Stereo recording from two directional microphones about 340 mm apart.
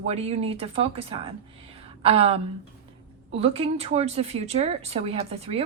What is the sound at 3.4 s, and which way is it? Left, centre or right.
A woman's voice, centre.